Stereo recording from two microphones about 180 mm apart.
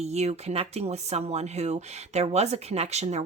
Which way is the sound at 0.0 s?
40° right (ahead or behind).